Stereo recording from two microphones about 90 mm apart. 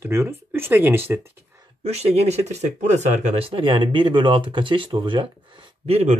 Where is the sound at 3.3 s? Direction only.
80° right.